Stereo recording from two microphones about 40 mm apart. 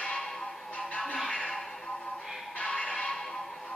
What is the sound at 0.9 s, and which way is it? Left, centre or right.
Music, left.